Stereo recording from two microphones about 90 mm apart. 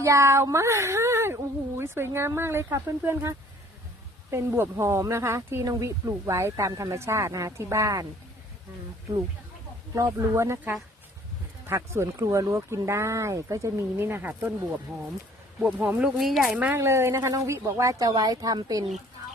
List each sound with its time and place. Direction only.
0.0 s speech: 35° right (ahead or behind)
9.9 s speech: 35° right (ahead or behind)
11.6 s speech: 30° right (ahead or behind)
16.1 s a woman's voice: centre (ahead or behind)
16.7 s speech: 30° right (ahead or behind)
18.1 s speech: 45° right (ahead or behind)